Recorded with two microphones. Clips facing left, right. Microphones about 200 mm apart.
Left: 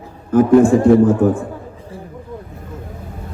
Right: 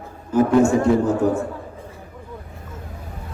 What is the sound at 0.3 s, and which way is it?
Speech, 55° left (ahead or behind).